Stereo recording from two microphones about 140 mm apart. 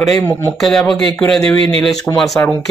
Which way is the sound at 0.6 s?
Centre (ahead or behind).